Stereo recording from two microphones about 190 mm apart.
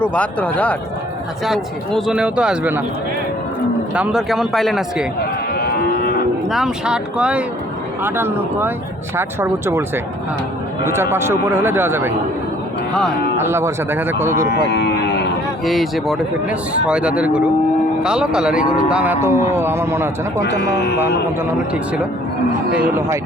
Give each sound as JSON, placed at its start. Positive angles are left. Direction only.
{"t": 0.0, "sound": "speech", "side_deg": 10}
{"t": 3.9, "sound": "speech", "side_deg": -5}
{"t": 5.5, "sound": "moo", "side_deg": 55}
{"t": 6.5, "sound": "speech", "side_deg": -5}
{"t": 12.9, "sound": "speech", "side_deg": 5}
{"t": 13.4, "sound": "speech", "side_deg": -15}
{"t": 14.5, "sound": "cattle", "side_deg": 60}
{"t": 15.6, "sound": "speech", "side_deg": 0}
{"t": 20.6, "sound": "speech", "side_deg": 60}
{"t": 23.0, "sound": "speech", "side_deg": -15}